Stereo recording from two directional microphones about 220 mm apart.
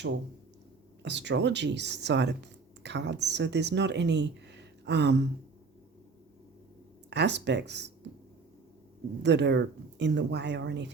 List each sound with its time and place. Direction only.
1.0 s speech: 50° right (ahead or behind)
7.1 s speech: 50° right (ahead or behind)
9.2 s speech: 50° right (ahead or behind)